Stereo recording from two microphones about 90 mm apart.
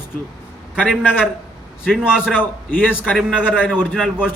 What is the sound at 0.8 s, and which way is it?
A man's voice, 10° right (ahead or behind).